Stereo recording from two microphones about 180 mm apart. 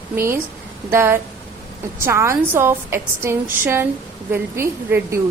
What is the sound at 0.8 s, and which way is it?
A woman's voice, 15° right (ahead or behind).